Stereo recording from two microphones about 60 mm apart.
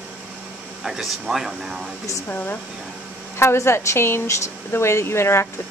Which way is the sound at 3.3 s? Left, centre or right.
Left.